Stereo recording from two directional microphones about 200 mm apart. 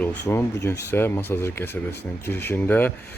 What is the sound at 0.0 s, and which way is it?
Speech, 10° left (ahead or behind).